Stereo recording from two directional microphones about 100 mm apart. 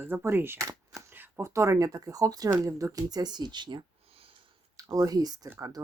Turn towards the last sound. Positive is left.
turn(degrees=-35)  # may be behind; listen again after turning